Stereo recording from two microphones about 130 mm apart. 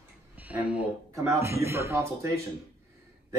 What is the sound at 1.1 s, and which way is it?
Speech, 25° right (ahead or behind).